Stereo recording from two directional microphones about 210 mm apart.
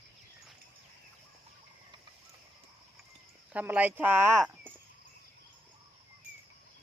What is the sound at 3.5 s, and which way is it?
Speech, 10° right (ahead or behind).